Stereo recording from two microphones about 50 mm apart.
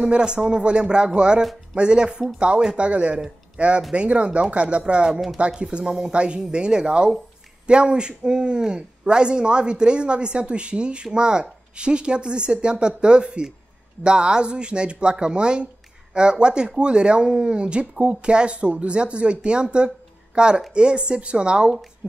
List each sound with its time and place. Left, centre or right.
0.0 s speech: centre
1.4 s speech: centre
1.8 s speech: centre